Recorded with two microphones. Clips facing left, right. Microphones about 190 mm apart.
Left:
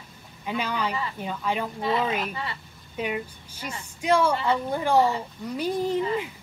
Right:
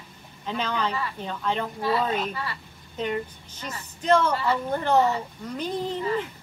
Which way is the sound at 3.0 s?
10° left (ahead or behind).